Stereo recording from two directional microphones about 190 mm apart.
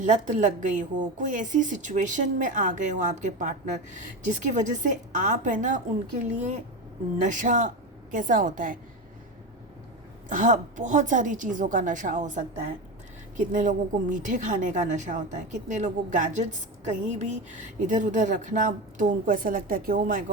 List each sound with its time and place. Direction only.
0.0 s a woman's voice: 40° right (ahead or behind)
10.2 s a woman's voice: 45° right (ahead or behind)